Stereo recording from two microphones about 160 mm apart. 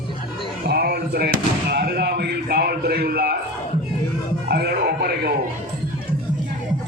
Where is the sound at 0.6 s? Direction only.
80° right.